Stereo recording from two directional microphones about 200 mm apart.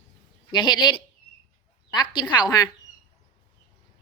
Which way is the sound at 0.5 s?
20° left (ahead or behind).